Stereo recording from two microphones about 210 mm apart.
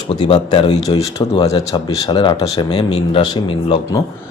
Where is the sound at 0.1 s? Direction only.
25° left (ahead or behind).